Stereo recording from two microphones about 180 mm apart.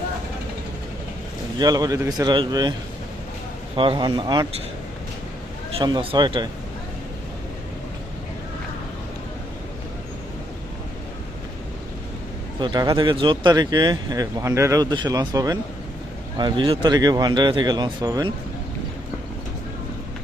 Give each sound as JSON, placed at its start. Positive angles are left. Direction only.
{"t": 1.5, "sound": "speech", "side_deg": -20}
{"t": 3.8, "sound": "speech", "side_deg": -30}
{"t": 5.7, "sound": "speech", "side_deg": -25}
{"t": 12.5, "sound": "speech", "side_deg": -25}